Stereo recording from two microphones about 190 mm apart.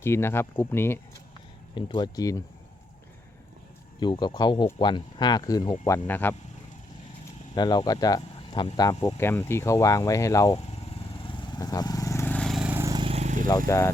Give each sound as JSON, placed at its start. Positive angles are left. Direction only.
{"t": 0.0, "sound": "speech", "side_deg": 10}
{"t": 1.7, "sound": "speech", "side_deg": 25}
{"t": 4.0, "sound": "speech", "side_deg": 25}
{"t": 7.5, "sound": "speech", "side_deg": 20}
{"t": 11.3, "sound": "vehicle", "side_deg": 25}
{"t": 13.5, "sound": "speech", "side_deg": 15}